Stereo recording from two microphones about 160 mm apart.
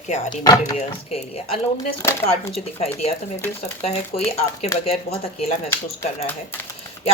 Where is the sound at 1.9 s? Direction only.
15° left (ahead or behind).